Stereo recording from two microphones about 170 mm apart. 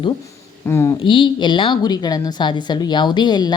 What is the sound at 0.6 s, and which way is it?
Speech, 15° left (ahead or behind).